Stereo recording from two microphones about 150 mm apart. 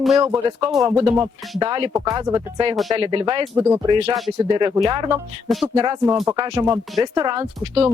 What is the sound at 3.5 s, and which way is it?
Speech, 15° right (ahead or behind).